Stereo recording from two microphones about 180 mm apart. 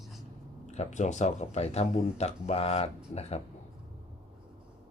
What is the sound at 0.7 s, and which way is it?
Speech, 40° left (ahead or behind).